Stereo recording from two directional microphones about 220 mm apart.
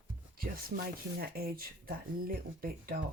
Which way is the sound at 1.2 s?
40° right (ahead or behind).